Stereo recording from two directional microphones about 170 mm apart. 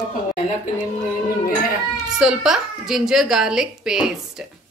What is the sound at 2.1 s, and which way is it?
A woman's voice, 5° right (ahead or behind).